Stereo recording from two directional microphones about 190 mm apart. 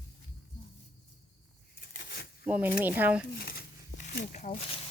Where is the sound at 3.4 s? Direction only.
55° left (ahead or behind).